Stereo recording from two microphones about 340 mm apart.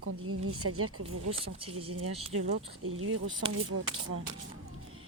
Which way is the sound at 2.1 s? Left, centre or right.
Centre.